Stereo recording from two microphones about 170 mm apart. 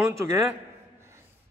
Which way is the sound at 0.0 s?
15° right (ahead or behind).